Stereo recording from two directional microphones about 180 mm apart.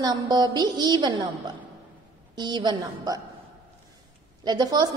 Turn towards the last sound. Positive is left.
turn(degrees=-20)  # may be behind; listen again after turning